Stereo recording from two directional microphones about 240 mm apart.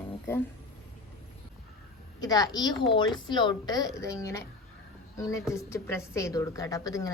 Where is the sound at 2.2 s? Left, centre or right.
Centre.